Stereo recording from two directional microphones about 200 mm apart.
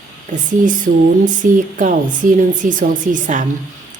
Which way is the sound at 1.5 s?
40° right (ahead or behind).